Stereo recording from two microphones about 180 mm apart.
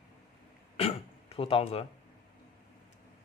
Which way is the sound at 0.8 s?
30° left (ahead or behind).